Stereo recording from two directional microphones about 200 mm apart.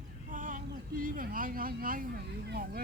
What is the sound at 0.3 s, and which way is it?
Speech, 40° right (ahead or behind).